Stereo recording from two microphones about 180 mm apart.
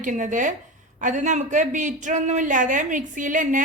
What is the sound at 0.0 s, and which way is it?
Speech, 45° right (ahead or behind).